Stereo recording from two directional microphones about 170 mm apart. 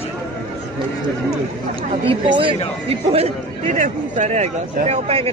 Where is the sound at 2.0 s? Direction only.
30° right (ahead or behind).